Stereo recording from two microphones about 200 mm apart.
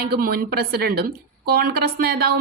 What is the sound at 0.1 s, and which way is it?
Speech, 50° right (ahead or behind).